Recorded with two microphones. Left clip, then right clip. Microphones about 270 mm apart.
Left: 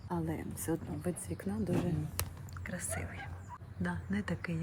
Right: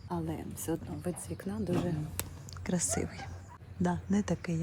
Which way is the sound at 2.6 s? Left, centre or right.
Centre.